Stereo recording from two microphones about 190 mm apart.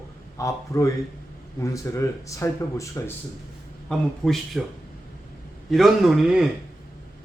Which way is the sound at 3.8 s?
Centre (ahead or behind).